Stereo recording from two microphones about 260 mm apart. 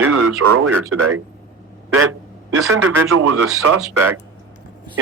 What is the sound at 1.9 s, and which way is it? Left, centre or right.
Quack, right.